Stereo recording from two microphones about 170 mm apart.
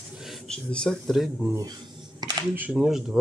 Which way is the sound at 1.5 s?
20° right (ahead or behind).